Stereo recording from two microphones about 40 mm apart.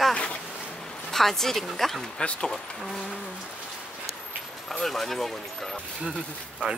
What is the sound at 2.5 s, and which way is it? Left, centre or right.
Speech, centre.